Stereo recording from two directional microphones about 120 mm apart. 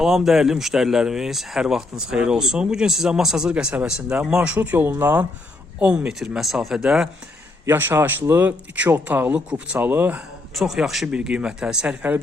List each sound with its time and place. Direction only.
0.0 s speech: 5° right (ahead or behind)
7.6 s speech: 20° right (ahead or behind)
10.5 s speech: centre (ahead or behind)